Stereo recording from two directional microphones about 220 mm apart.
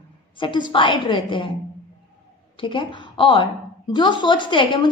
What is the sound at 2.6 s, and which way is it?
A woman's voice, 20° left (ahead or behind).